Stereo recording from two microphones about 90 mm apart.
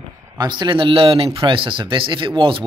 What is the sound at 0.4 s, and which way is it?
A man's voice, 60° right (ahead or behind).